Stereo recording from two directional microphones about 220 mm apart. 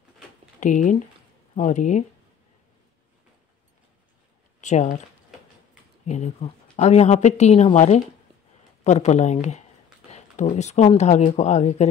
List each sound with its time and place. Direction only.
0.6 s a woman's voice: 35° left (ahead or behind)
4.6 s speech: 30° left (ahead or behind)
6.0 s a woman's voice: 30° left (ahead or behind)